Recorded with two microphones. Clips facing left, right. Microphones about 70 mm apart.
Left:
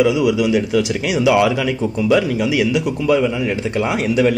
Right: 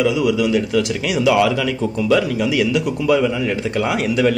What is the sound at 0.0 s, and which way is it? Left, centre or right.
A man's voice, centre.